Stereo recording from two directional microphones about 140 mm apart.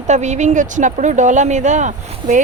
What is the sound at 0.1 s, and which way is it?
Speech, 55° right (ahead or behind).